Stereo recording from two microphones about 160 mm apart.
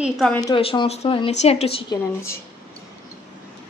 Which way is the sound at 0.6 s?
35° left (ahead or behind).